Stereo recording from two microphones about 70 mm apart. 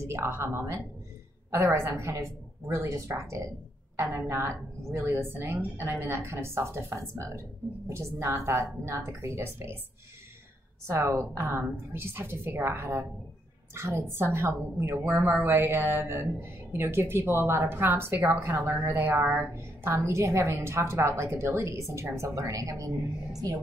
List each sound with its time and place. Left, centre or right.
0.0 s a woman's voice: right
3.9 s a sound: right
4.3 s speech: right
10.9 s speech: right
15.1 s a woman's voice: right